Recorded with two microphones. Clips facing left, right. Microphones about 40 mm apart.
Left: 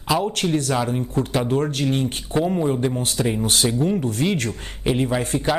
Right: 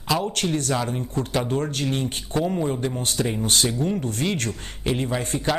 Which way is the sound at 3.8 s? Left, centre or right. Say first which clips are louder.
Left 4 dB; centre.